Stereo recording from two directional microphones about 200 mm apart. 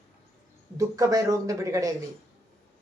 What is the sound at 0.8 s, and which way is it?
Speech, 15° right (ahead or behind).